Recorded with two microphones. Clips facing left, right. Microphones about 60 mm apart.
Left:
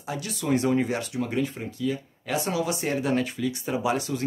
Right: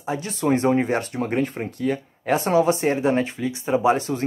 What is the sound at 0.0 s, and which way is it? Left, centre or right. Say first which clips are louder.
Speech: right 7 dB; right.